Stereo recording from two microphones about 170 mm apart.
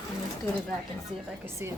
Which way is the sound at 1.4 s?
15° right (ahead or behind).